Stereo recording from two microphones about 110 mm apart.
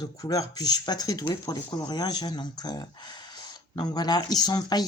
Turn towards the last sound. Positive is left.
turn(degrees=40)  # may be behind; listen again after turning